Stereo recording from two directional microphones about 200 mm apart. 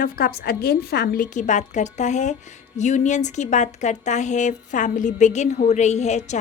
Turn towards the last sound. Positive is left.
turn(degrees=35)  # may be behind; listen again after turning